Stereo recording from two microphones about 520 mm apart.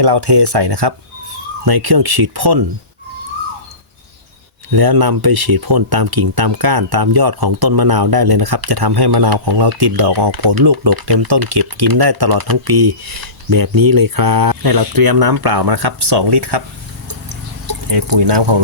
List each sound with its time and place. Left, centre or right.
0.0 s speech: right
4.7 s speech: right
17.7 s speech: right